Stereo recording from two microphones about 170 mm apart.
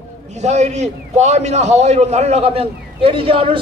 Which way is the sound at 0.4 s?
40° right (ahead or behind).